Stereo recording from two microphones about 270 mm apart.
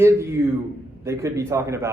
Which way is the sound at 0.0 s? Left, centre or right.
Centre.